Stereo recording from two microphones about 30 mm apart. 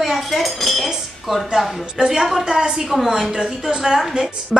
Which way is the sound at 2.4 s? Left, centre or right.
Right.